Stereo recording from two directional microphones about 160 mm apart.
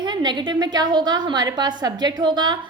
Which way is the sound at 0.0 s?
25° right (ahead or behind).